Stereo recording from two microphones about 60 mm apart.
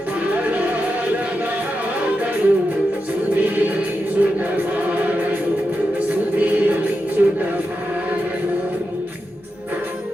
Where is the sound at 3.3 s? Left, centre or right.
Right.